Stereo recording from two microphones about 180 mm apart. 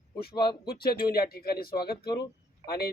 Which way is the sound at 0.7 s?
60° left (ahead or behind).